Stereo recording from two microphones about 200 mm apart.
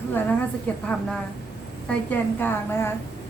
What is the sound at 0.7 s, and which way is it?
Speech, 5° left (ahead or behind).